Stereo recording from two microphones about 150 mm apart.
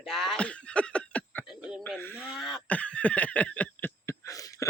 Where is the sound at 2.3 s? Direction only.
Centre (ahead or behind).